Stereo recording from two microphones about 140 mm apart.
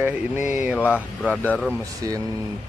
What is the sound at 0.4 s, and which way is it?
Mantra, 60° left (ahead or behind).